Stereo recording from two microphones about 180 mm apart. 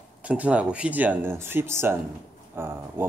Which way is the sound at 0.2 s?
5° right (ahead or behind).